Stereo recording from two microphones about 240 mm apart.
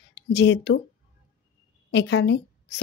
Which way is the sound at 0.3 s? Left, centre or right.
Left.